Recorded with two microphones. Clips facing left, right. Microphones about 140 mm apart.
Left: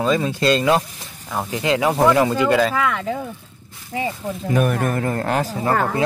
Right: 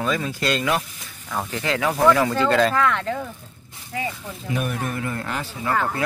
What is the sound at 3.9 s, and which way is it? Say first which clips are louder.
Speech: left 4 dB; 25° left (ahead or behind).